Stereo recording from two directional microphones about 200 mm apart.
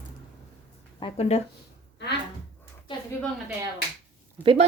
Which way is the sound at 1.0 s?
30° left (ahead or behind).